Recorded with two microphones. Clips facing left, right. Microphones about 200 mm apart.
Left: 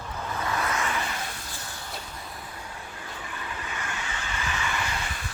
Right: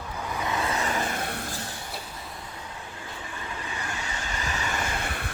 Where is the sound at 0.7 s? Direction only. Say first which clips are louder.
Right 2 dB; 35° right (ahead or behind); by 1.5 s 60° right (ahead or behind).